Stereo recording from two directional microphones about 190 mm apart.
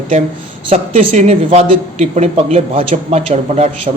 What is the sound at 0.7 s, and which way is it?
A woman's voice, 35° right (ahead or behind).